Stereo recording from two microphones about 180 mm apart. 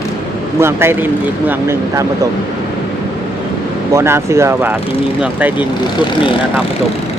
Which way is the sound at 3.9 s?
15° right (ahead or behind).